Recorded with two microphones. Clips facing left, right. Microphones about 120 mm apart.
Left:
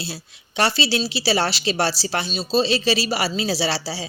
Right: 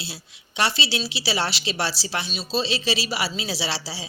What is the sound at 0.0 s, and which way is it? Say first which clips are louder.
Speech: left 5 dB; 40° left (ahead or behind).